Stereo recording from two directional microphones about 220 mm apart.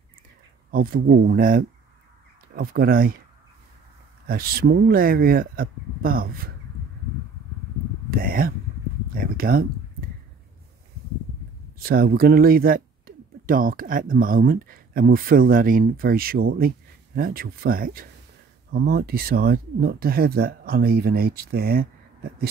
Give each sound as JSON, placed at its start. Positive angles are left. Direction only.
{"t": 0.7, "sound": "speech", "side_deg": -40}
{"t": 4.3, "sound": "speech", "side_deg": -45}
{"t": 8.1, "sound": "speech", "side_deg": -40}
{"t": 11.8, "sound": "speech", "side_deg": -40}